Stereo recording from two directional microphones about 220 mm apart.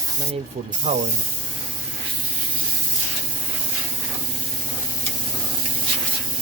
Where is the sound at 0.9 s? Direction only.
30° right (ahead or behind).